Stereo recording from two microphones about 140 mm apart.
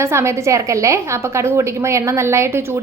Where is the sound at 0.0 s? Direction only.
20° right (ahead or behind).